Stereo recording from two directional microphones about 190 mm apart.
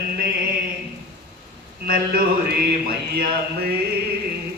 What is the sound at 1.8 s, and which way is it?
Speech, 50° right (ahead or behind).